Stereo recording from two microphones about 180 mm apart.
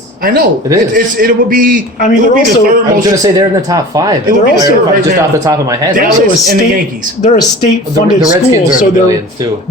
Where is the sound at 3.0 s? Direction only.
20° right (ahead or behind).